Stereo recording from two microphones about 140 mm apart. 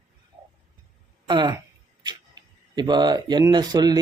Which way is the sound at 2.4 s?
30° right (ahead or behind).